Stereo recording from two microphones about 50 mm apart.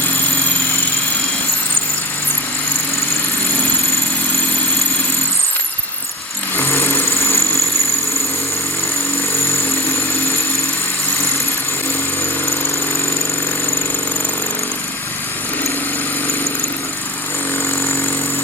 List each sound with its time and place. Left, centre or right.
6.7 s vehicle: left